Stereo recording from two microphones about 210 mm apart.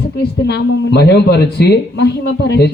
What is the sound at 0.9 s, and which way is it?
A man's voice, 50° left (ahead or behind).